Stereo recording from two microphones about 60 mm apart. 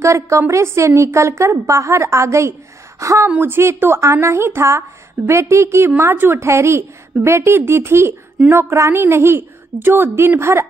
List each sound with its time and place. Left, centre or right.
0.0 s a woman's voice: right
3.3 s a woman's voice: right
3.5 s a woman's voice: right